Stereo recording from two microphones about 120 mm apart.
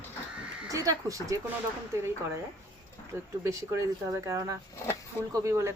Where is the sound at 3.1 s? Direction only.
20° right (ahead or behind).